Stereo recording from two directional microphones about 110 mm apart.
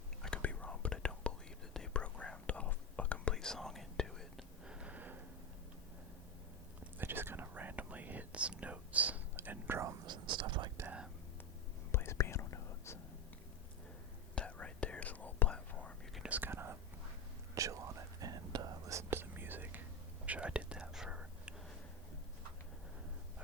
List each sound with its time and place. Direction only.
0.2 s whispering: 10° left (ahead or behind)
4.6 s a sound: 10° right (ahead or behind)
7.0 s whispering: 20° right (ahead or behind)
10.1 s whispering: 45° right (ahead or behind)
10.8 s whispering: 10° right (ahead or behind)
11.9 s whispering: 25° left (ahead or behind)
14.3 s whispering: 10° left (ahead or behind)
16.1 s whispering: 5° right (ahead or behind)
16.4 s whispering: 20° right (ahead or behind)